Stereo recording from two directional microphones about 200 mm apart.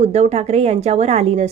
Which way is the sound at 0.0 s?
35° right (ahead or behind).